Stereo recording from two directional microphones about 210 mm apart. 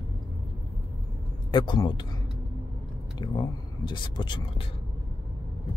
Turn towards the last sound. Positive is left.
turn(degrees=20)  # may be behind; listen again after turning